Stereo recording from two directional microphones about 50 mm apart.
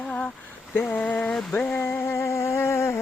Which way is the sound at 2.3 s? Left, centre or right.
Left.